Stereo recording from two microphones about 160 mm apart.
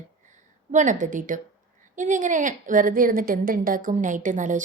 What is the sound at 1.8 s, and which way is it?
A woman's voice, 50° right (ahead or behind).